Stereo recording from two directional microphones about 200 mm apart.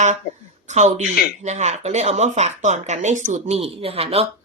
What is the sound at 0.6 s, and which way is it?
Speech, 35° right (ahead or behind).